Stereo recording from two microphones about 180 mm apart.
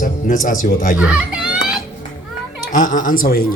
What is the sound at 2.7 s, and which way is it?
Speech, 45° left (ahead or behind).